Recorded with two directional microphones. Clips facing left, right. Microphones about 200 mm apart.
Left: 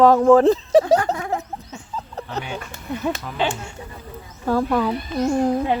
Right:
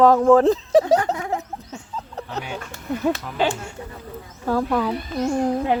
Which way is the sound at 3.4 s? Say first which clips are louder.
Right 1 dB; 45° right (ahead or behind).